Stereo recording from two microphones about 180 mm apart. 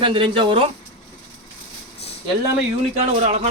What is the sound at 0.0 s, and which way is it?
Speech, 30° right (ahead or behind).